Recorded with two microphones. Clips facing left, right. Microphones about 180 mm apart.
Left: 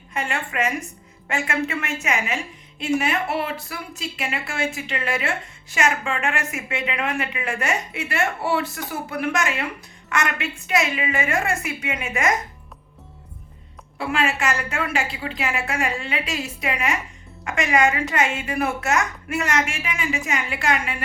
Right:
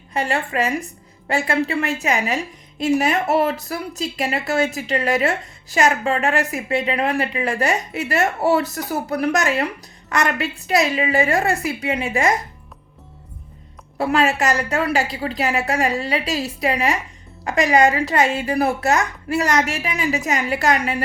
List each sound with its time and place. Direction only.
0.1 s a woman's voice: 35° right (ahead or behind)
14.0 s a woman's voice: 40° right (ahead or behind)